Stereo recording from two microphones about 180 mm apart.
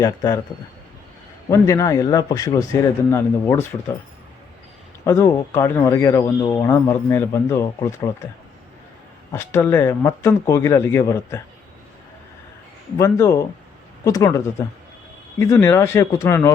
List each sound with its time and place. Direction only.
0.0 s a man's voice: 20° left (ahead or behind)
1.5 s a man's voice: 20° left (ahead or behind)
5.0 s speech: 15° left (ahead or behind)
9.3 s speech: 15° left (ahead or behind)
13.0 s speech: 15° left (ahead or behind)